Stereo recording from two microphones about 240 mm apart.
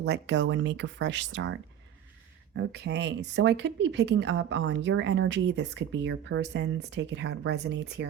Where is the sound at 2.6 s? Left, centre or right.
Right.